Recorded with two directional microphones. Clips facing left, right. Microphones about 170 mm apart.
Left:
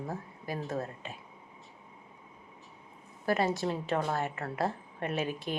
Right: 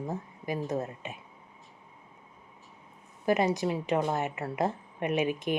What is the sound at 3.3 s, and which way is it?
A woman's voice, 15° right (ahead or behind).